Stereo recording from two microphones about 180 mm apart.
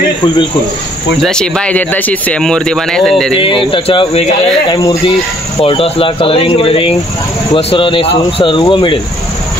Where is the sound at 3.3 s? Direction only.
30° left (ahead or behind).